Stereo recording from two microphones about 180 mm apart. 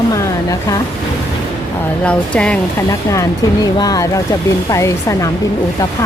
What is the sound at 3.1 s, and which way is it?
Speech, 20° left (ahead or behind).